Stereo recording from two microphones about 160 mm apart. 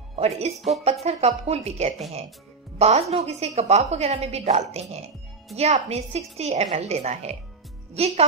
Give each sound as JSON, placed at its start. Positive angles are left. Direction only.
{"t": 0.6, "sound": "speech", "side_deg": 0}
{"t": 1.0, "sound": "a woman's voice", "side_deg": -40}